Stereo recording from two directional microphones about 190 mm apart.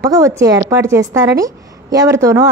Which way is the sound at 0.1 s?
15° right (ahead or behind).